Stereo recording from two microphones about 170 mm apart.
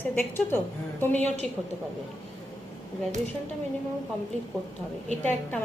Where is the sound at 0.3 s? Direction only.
10° left (ahead or behind).